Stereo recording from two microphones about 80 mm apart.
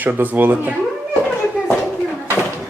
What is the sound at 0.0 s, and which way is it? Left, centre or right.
Speech, right.